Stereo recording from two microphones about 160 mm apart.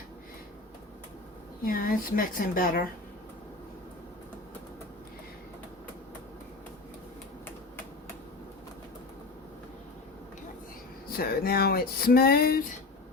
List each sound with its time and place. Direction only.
1.6 s speech: 65° left (ahead or behind)
11.2 s speech: 70° left (ahead or behind)